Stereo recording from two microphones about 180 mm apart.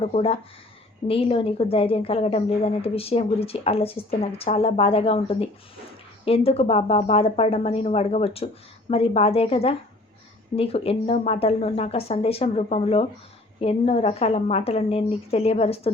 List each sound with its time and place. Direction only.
0.0 s a woman's voice: 35° left (ahead or behind)